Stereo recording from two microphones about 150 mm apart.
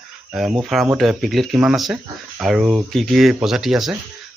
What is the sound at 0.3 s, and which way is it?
Speech, 5° right (ahead or behind).